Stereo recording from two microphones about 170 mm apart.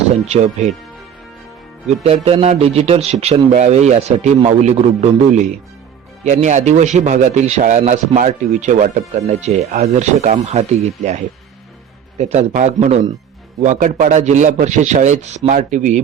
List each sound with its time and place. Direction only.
2.0 s speech: 35° right (ahead or behind)